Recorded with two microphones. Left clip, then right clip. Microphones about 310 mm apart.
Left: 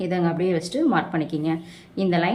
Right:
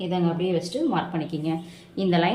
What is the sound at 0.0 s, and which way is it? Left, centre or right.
A woman's voice, centre.